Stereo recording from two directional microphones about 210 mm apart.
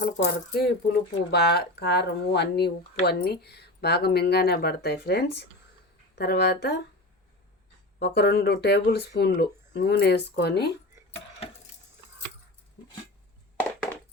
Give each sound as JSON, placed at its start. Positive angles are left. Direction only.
{"t": 0.6, "sound": "speech", "side_deg": 50}
{"t": 7.9, "sound": "speech", "side_deg": 55}
{"t": 13.6, "sound": "a sound", "side_deg": 5}